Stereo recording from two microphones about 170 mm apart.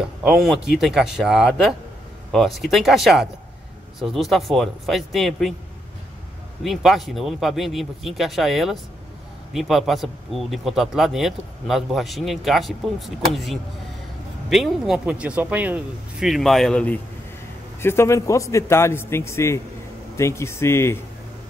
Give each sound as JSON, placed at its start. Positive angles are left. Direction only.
{"t": 0.0, "sound": "speech", "side_deg": 0}
{"t": 6.6, "sound": "a man's voice", "side_deg": 0}